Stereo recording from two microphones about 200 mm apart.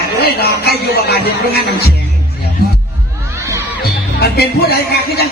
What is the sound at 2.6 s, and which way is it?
Music, 50° left (ahead or behind).